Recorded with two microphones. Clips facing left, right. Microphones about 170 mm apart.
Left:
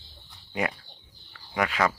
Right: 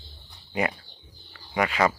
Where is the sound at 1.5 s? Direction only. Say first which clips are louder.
Right 2 dB; 5° right (ahead or behind).